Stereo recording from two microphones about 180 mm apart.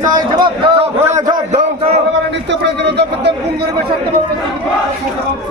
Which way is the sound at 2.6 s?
70° right (ahead or behind).